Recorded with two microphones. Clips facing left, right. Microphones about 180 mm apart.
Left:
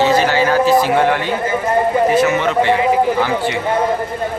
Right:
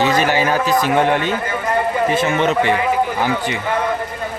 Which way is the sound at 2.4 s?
20° right (ahead or behind).